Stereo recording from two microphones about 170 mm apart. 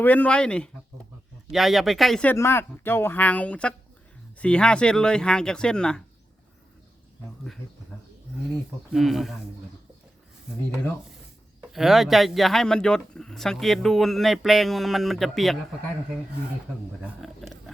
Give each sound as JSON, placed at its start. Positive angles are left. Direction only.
{"t": 0.0, "sound": "a woman's voice", "side_deg": 10}
{"t": 2.3, "sound": "a woman's voice", "side_deg": 15}
{"t": 8.9, "sound": "speech", "side_deg": 0}
{"t": 11.7, "sound": "speech", "side_deg": 0}
{"t": 17.0, "sound": "speech", "side_deg": 0}